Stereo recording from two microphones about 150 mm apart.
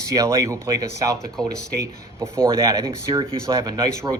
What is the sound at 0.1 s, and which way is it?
A man's voice, 20° right (ahead or behind).